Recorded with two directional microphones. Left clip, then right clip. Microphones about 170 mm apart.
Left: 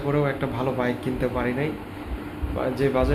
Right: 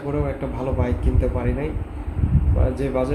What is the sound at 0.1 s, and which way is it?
A man's voice, 5° right (ahead or behind).